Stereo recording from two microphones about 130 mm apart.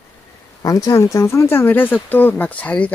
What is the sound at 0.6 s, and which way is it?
Speech, 30° left (ahead or behind).